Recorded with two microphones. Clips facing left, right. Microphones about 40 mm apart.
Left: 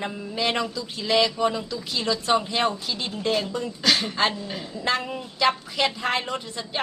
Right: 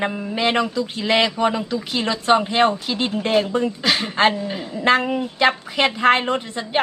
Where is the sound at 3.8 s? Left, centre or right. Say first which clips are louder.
Right 2 dB; right.